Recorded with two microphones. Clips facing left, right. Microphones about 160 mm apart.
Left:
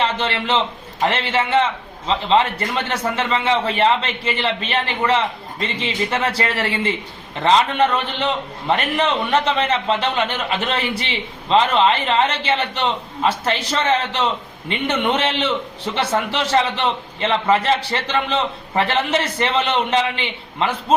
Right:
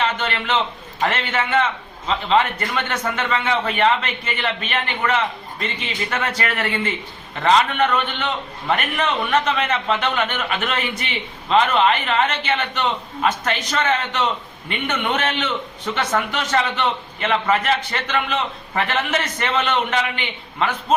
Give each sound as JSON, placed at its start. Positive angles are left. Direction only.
{"t": 0.0, "sound": "a man's voice", "side_deg": 30}